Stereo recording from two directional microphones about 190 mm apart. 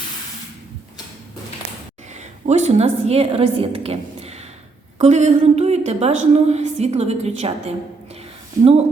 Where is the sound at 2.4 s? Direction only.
35° right (ahead or behind).